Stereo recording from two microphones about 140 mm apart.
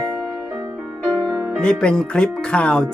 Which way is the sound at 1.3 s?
25° right (ahead or behind).